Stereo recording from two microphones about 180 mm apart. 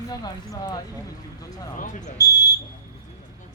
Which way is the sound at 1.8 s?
45° left (ahead or behind).